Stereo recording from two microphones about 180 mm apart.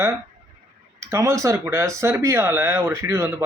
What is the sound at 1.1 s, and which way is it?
Speech, 15° right (ahead or behind).